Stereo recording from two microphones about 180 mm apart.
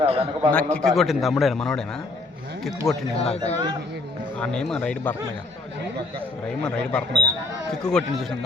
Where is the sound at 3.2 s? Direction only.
35° left (ahead or behind).